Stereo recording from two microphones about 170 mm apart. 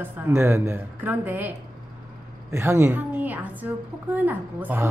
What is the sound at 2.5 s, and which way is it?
A woman's voice, 15° right (ahead or behind).